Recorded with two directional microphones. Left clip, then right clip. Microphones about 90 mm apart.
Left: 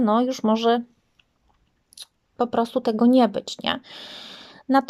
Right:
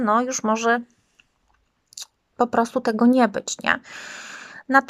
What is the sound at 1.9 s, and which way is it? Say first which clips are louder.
A woman's voice: right 4 dB; 5° right (ahead or behind).